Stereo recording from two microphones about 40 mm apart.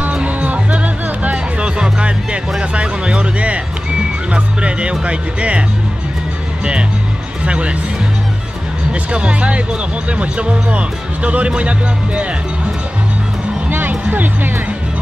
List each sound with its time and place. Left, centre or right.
0.0 s music: right
1.6 s music: right
2.7 s speech: right
7.4 s speech: right
9.1 s speech: right
13.7 s music: right
14.1 s speech: right